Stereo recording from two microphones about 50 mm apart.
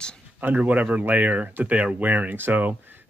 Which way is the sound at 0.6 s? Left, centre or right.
Right.